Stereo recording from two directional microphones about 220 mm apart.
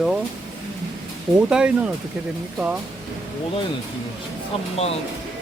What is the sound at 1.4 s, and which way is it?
Speech, 5° right (ahead or behind).